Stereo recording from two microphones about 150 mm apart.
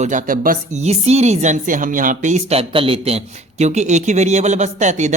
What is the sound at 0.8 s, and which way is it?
Speech, 45° right (ahead or behind).